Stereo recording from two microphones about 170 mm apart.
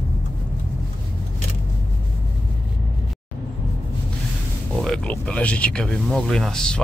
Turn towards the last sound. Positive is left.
turn(degrees=5)  # may be behind; listen again after turning